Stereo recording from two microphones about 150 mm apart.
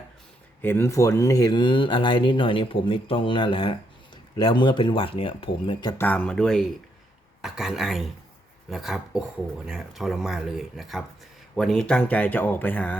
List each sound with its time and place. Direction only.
0.6 s speech: 15° left (ahead or behind); by 5.9 s 35° left (ahead or behind)
6.0 s speech: 10° left (ahead or behind)